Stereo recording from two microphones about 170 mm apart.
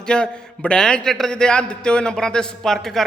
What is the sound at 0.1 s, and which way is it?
A man's voice, 5° left (ahead or behind).